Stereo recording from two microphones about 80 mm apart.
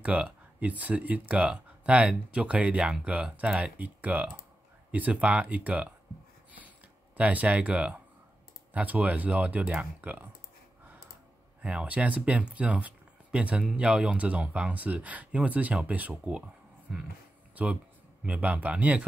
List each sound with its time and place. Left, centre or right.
0.0 s speech: centre
7.2 s speech: centre
11.6 s speech: centre